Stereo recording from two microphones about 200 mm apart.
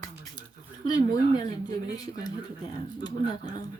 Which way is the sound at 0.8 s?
20° left (ahead or behind).